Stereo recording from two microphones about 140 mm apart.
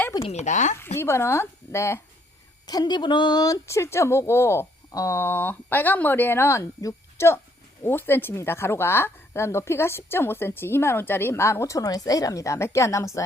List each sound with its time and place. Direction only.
0.2 s speech: 50° left (ahead or behind)
0.9 s speech: 20° left (ahead or behind)
2.6 s speech: 30° left (ahead or behind)